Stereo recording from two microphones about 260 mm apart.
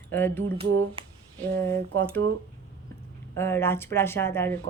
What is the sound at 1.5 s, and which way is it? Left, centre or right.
Speech, centre.